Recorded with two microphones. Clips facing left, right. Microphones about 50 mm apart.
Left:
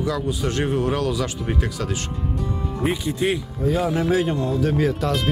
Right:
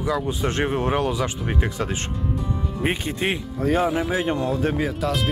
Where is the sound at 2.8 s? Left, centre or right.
Right.